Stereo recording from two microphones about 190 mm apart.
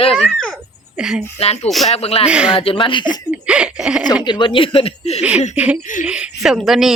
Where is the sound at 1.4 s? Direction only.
35° left (ahead or behind).